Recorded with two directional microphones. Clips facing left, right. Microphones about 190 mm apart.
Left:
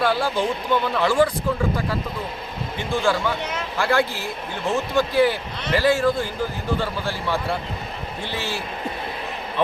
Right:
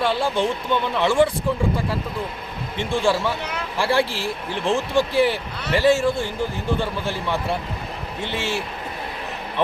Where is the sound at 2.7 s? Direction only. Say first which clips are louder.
Right 1 dB; 30° right (ahead or behind).